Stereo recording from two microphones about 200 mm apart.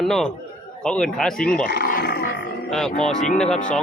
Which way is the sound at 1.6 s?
50° left (ahead or behind).